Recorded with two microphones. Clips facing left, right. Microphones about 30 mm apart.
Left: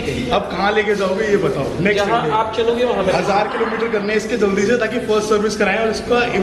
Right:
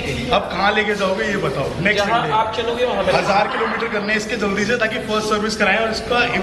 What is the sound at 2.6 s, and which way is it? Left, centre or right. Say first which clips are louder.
Speech: left 3 dB; right.